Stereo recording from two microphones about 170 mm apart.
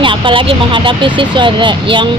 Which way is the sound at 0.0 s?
30° right (ahead or behind).